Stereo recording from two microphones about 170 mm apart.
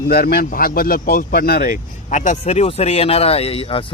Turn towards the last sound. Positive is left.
turn(degrees=35)  # may be behind; listen again after turning